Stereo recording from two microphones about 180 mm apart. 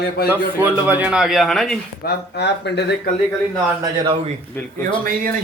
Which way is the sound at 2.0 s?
70° left (ahead or behind).